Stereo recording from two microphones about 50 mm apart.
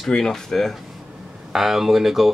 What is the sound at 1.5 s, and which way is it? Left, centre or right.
Speech, centre.